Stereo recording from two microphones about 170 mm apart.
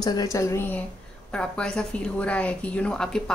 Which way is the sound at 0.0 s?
20° left (ahead or behind).